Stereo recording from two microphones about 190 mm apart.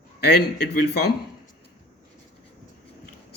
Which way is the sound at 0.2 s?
60° left (ahead or behind).